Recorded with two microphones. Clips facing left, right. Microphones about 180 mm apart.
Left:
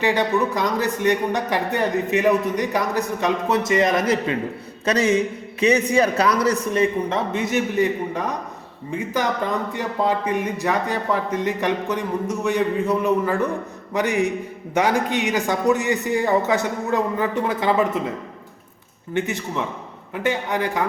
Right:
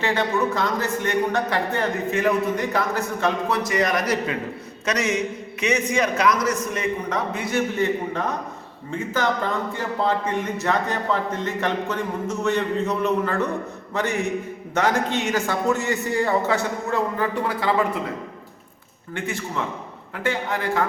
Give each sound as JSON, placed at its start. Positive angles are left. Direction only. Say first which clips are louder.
{"t": 0.0, "sound": "a man's voice", "louder": "left 2 dB", "side_deg": 15}
{"t": 19.1, "sound": "a man's voice", "louder": "left 4 dB", "side_deg": 20}